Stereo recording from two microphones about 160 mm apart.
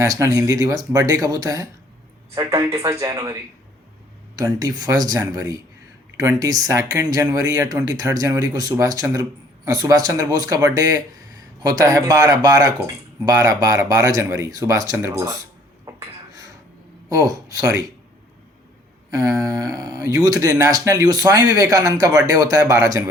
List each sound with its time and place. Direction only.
0.0 s speech: 20° right (ahead or behind)
4.6 s speech: 25° right (ahead or behind)
15.9 s a sound: 20° right (ahead or behind)
17.2 s speech: 20° right (ahead or behind)
19.1 s speech: 20° right (ahead or behind)